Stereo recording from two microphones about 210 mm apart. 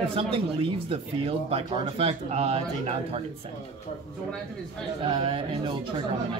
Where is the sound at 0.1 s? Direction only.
25° right (ahead or behind).